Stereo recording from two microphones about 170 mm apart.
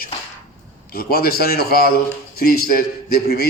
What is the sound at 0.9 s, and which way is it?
A man's voice, 60° left (ahead or behind).